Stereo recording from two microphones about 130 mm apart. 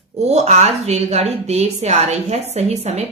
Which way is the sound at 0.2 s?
60° right (ahead or behind).